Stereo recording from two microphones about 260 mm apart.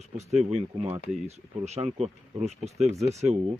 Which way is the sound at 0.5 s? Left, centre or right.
Right.